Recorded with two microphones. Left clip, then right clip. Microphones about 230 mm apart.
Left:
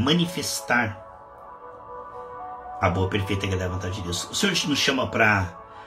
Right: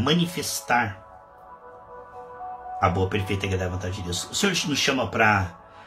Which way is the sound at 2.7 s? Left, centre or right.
Centre.